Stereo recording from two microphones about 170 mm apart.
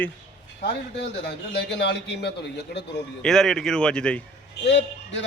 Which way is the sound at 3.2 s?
5° left (ahead or behind).